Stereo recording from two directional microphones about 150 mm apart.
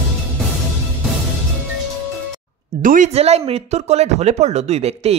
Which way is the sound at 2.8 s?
60° right (ahead or behind).